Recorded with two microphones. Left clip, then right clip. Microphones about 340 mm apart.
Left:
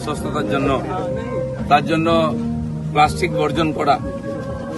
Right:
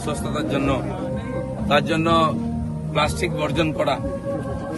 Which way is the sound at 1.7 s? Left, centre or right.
Centre.